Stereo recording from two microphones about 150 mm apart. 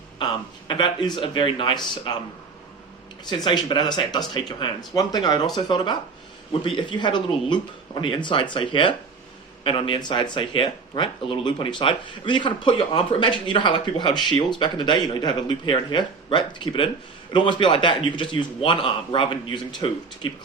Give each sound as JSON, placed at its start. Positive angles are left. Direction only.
{"t": 0.7, "sound": "speech", "side_deg": 30}
{"t": 3.2, "sound": "speech", "side_deg": 30}